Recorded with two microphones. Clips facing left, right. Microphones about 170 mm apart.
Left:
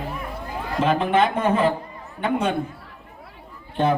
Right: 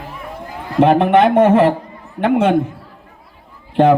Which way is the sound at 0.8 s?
65° right (ahead or behind).